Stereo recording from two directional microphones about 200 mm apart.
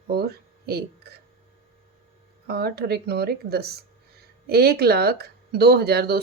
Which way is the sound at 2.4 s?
50° right (ahead or behind).